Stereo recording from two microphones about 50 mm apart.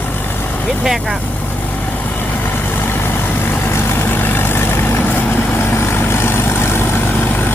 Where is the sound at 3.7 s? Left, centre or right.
Left.